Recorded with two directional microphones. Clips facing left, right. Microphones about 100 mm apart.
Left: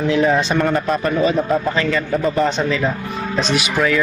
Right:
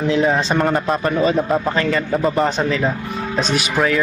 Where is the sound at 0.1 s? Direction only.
25° right (ahead or behind).